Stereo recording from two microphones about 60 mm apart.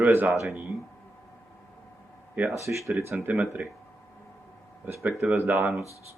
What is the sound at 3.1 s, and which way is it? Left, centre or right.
Speech, right.